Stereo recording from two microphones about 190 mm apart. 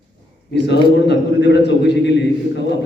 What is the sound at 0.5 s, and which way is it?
A man's voice, 65° left (ahead or behind).